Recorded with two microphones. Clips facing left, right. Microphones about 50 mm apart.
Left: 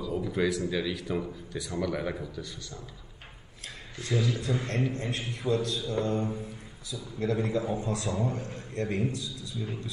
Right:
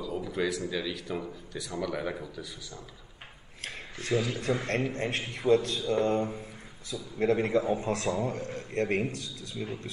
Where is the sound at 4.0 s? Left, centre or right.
Right.